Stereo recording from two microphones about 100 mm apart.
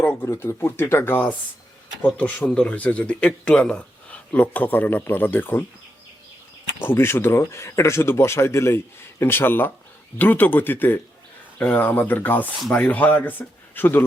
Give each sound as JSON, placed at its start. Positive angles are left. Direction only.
{"t": 0.0, "sound": "speech", "side_deg": 25}
{"t": 6.8, "sound": "speech", "side_deg": 25}